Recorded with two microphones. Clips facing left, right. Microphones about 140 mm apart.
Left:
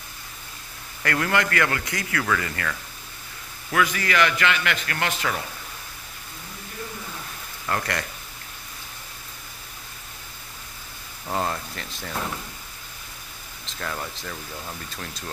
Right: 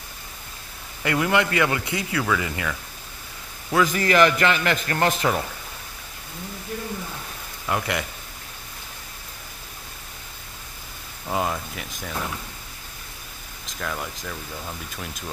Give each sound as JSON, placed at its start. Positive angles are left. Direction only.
{"t": 1.0, "sound": "a man's voice", "side_deg": -15}
{"t": 3.7, "sound": "a man's voice", "side_deg": -40}
{"t": 7.6, "sound": "a man's voice", "side_deg": -15}
{"t": 11.2, "sound": "a man's voice", "side_deg": -5}
{"t": 13.7, "sound": "speech", "side_deg": 0}